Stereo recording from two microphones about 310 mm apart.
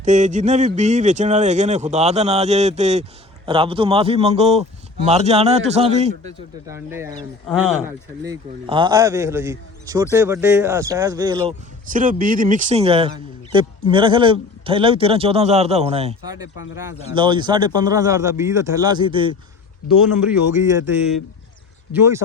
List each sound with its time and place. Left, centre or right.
0.0 s speech: right
6.7 s speech: centre
11.9 s speech: right
19.8 s speech: left
20.2 s speech: centre